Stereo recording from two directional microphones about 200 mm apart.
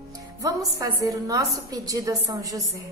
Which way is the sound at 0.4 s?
15° right (ahead or behind).